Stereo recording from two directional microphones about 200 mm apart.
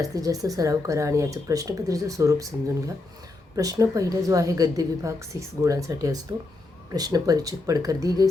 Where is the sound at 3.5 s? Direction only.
15° right (ahead or behind).